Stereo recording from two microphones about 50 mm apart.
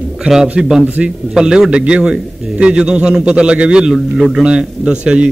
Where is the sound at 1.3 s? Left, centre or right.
Centre.